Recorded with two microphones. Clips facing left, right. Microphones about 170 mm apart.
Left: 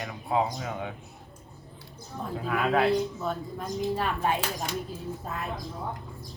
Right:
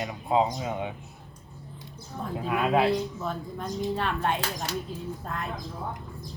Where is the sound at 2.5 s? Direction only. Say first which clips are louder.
Right 1 dB; 20° right (ahead or behind).